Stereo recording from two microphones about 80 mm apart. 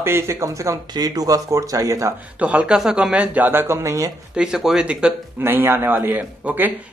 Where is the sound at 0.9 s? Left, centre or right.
Right.